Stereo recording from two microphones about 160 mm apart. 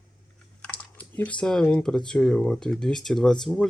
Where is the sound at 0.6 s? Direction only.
10° left (ahead or behind).